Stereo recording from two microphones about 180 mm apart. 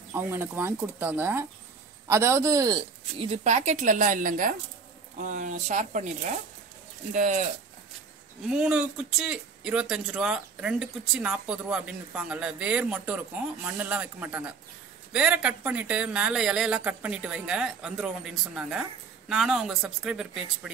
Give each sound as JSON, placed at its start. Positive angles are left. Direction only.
{"t": 0.1, "sound": "speech", "side_deg": -10}
{"t": 3.2, "sound": "a woman's voice", "side_deg": -35}
{"t": 8.5, "sound": "speech", "side_deg": -5}